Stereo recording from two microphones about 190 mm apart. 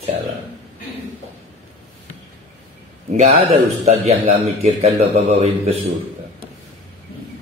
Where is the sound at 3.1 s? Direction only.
35° right (ahead or behind).